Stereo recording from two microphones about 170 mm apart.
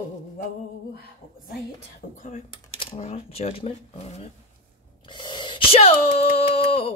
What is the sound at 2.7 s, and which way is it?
Speech, 40° left (ahead or behind).